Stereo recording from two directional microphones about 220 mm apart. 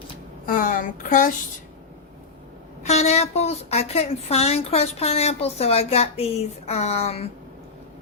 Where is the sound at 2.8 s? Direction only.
30° left (ahead or behind).